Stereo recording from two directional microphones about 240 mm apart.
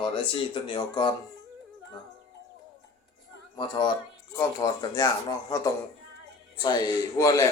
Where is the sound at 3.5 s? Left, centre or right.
Centre.